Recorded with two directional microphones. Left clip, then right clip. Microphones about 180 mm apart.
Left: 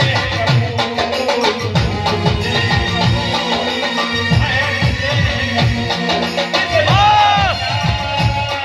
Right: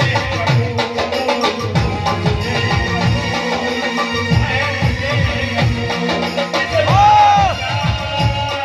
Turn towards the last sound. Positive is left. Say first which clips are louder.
# right 2 dB
turn(degrees=-15)  # may be behind; listen again after turning